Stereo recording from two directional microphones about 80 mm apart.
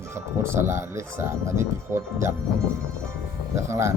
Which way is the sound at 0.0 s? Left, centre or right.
Right.